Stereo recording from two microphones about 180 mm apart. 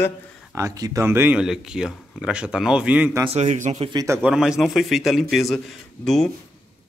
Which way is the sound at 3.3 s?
40° right (ahead or behind).